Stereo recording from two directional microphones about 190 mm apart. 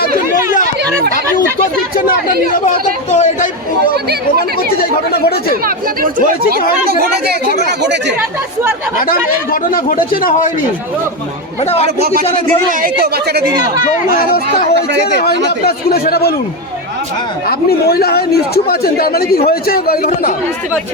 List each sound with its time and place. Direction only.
2.5 s speech: 40° left (ahead or behind)
4.4 s speech: 50° left (ahead or behind)
5.6 s speech: 45° right (ahead or behind)
7.8 s speech: 65° right (ahead or behind)
9.0 s speech: 50° left (ahead or behind)
11.6 s speech: 35° left (ahead or behind)
11.9 s speech: 55° right (ahead or behind)
14.1 s speech: 50° left (ahead or behind)
15.4 s a man's voice: 55° left (ahead or behind)
17.5 s a man's voice: 55° left (ahead or behind)